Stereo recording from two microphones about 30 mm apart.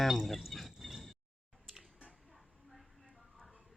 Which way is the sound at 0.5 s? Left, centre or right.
Centre.